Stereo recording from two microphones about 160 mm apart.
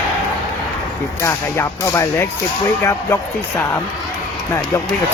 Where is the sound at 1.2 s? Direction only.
15° left (ahead or behind).